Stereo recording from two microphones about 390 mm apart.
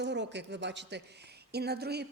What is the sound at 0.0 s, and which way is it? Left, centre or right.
A woman's voice, right.